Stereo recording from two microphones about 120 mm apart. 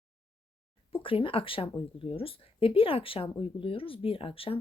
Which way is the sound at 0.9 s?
50° left (ahead or behind).